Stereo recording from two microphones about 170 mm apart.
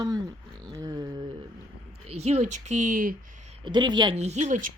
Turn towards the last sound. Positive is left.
turn(degrees=-45)  # may be behind; listen again after turning